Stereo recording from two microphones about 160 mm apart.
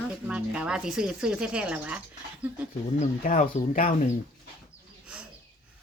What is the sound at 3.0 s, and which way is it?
Speech, 55° left (ahead or behind).